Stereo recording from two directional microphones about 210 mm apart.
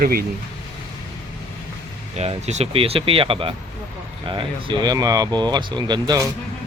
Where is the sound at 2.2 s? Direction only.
30° right (ahead or behind).